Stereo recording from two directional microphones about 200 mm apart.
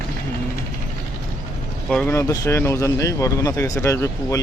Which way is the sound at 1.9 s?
10° left (ahead or behind).